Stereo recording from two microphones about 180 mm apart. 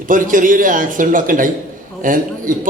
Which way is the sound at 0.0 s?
50° right (ahead or behind).